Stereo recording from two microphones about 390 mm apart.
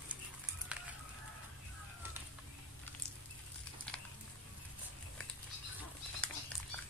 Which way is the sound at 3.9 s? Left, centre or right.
Centre.